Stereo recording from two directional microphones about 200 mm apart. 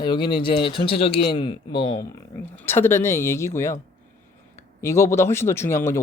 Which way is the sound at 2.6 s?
10° left (ahead or behind).